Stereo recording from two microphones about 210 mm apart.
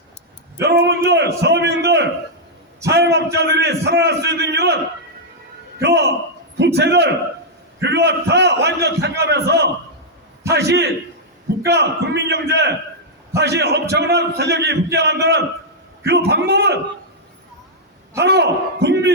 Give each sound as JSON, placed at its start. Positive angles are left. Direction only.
{"t": 0.6, "sound": "a man's voice", "side_deg": -55}
{"t": 5.8, "sound": "a man's voice", "side_deg": -55}
{"t": 18.2, "sound": "a man's voice", "side_deg": -55}